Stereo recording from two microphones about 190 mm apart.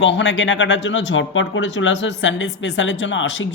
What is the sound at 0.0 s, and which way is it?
Speech, 70° left (ahead or behind).